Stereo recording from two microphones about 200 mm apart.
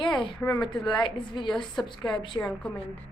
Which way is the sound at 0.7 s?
25° left (ahead or behind).